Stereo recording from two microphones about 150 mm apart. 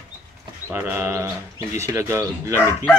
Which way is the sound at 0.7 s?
15° right (ahead or behind).